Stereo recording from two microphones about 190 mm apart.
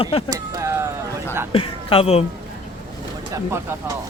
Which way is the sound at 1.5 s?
30° left (ahead or behind).